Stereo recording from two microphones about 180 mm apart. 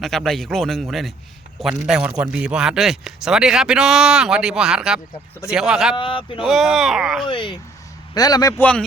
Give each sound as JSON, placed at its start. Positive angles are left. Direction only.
{"t": 0.0, "sound": "a man's voice", "side_deg": 0}
{"t": 6.0, "sound": "a man's voice", "side_deg": 30}
{"t": 6.4, "sound": "a man's voice", "side_deg": 0}
{"t": 7.3, "sound": "a man's voice", "side_deg": 25}